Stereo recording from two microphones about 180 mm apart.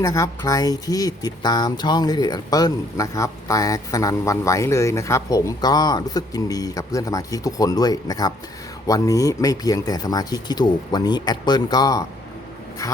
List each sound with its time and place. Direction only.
0.0 s speech: 15° left (ahead or behind)